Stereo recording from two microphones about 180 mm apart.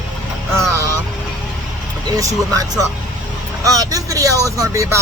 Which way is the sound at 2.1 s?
20° right (ahead or behind).